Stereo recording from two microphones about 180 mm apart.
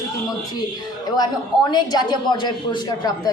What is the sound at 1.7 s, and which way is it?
Speech, 25° left (ahead or behind).